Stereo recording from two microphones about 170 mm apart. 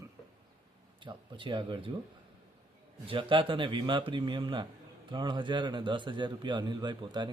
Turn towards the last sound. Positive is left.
turn(degrees=-25)  # may be behind; listen again after turning